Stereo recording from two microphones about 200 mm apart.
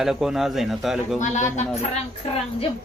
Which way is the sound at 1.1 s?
35° left (ahead or behind).